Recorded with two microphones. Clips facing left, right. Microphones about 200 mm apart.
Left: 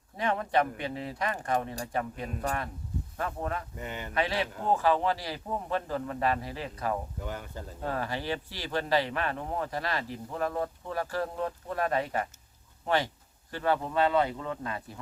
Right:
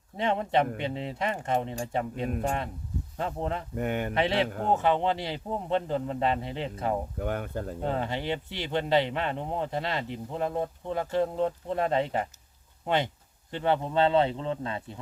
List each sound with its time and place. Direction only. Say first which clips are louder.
0.2 s a man's voice: right 2 dB; 25° right (ahead or behind)
3.8 s speech: right 9 dB; 55° right (ahead or behind)
4.1 s a man's voice: even; 25° right (ahead or behind)
7.2 s speech: right 7 dB; 55° right (ahead or behind)
7.8 s a man's voice: right 1 dB; 25° right (ahead or behind)